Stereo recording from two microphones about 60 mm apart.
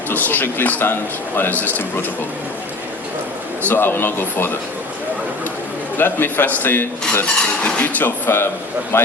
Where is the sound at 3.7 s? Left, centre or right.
Left.